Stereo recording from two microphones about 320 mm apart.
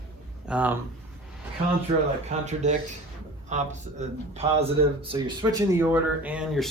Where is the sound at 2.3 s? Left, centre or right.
Right.